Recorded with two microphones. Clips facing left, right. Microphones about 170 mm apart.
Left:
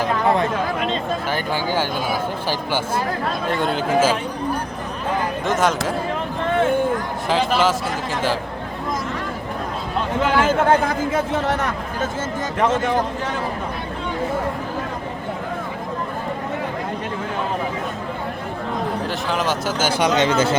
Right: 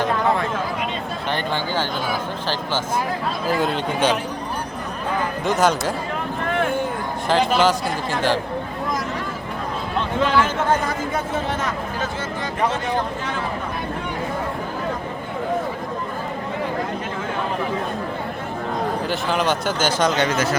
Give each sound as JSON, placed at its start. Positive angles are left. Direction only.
{"t": 1.3, "sound": "speech", "side_deg": 10}
{"t": 3.4, "sound": "a man's voice", "side_deg": -5}
{"t": 5.5, "sound": "a man's voice", "side_deg": 0}
{"t": 7.3, "sound": "a man's voice", "side_deg": 0}
{"t": 10.3, "sound": "speech", "side_deg": 65}
{"t": 12.6, "sound": "speech", "side_deg": 45}
{"t": 19.0, "sound": "a man's voice", "side_deg": 0}
{"t": 20.1, "sound": "speech", "side_deg": 25}